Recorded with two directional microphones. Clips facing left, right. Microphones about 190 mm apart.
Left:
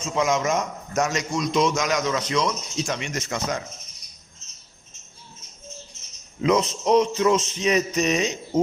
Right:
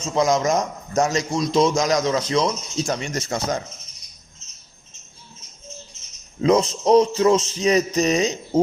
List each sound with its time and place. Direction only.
0.0 s a man's voice: 35° right (ahead or behind)
6.4 s a man's voice: 35° right (ahead or behind)